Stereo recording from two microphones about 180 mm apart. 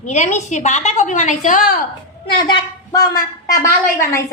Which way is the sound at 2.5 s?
20° left (ahead or behind).